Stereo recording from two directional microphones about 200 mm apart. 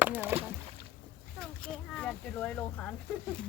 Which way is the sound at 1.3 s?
5° left (ahead or behind).